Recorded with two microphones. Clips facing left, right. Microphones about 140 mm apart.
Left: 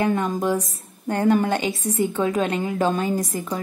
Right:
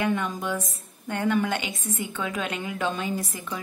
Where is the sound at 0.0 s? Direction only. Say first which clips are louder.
Left 5 dB; 40° left (ahead or behind).